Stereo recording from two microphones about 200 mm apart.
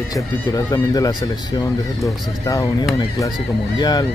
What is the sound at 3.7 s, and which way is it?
Speech, 20° left (ahead or behind).